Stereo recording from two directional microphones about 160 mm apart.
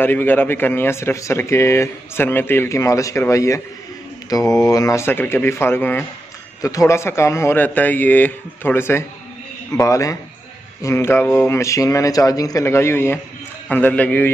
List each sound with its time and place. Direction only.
0.0 s speech: 10° left (ahead or behind)